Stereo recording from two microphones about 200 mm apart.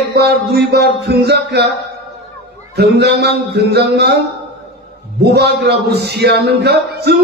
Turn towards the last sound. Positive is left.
turn(degrees=-55)  # may be behind; listen again after turning